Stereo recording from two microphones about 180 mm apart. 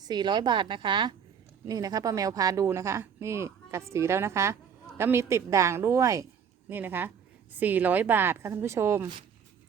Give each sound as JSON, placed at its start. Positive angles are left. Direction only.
{"t": 0.0, "sound": "a woman's voice", "side_deg": -25}